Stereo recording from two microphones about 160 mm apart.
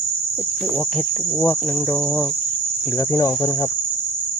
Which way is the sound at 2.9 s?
20° left (ahead or behind).